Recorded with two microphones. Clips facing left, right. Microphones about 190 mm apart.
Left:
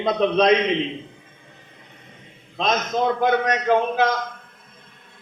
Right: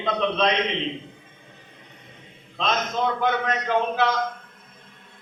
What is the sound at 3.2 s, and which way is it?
Speech, 40° left (ahead or behind).